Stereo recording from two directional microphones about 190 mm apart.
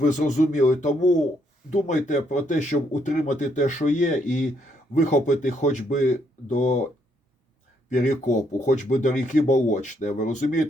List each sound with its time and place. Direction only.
0.0 s speech: 40° left (ahead or behind)
7.9 s speech: 40° left (ahead or behind)